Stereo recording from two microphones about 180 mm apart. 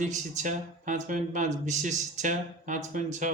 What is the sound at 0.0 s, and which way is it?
Speech, 45° right (ahead or behind).